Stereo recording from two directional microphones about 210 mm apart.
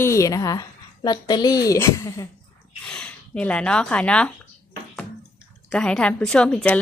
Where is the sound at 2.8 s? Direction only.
5° left (ahead or behind).